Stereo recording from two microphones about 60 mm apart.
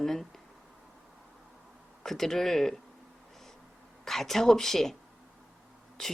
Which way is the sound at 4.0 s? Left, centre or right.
Centre.